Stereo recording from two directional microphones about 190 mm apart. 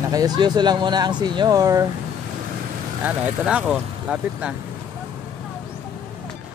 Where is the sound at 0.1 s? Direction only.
20° right (ahead or behind).